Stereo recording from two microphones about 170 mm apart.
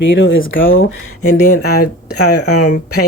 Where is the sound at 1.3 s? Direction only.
60° left (ahead or behind).